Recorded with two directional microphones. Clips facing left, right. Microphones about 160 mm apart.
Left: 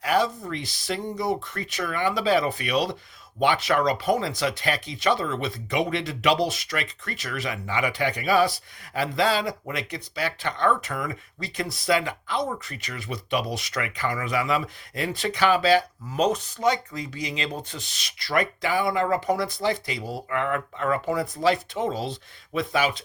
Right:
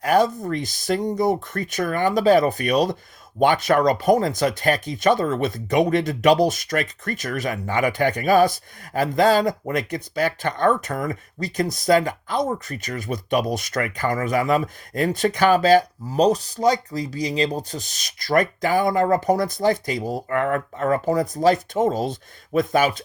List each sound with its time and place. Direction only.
0.0 s speech: 45° right (ahead or behind)